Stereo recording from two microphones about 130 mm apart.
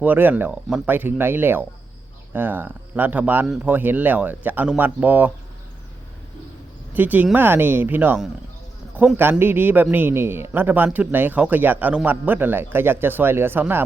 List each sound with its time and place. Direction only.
0.0 s speech: 15° right (ahead or behind)
6.9 s speech: 15° right (ahead or behind)